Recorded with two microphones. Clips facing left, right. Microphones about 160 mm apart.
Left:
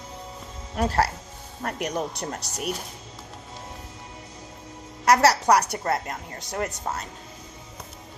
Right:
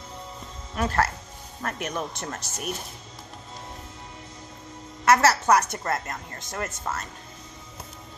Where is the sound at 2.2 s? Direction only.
30° left (ahead or behind).